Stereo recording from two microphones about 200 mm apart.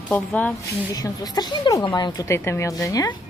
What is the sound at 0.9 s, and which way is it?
A woman's voice, 20° left (ahead or behind).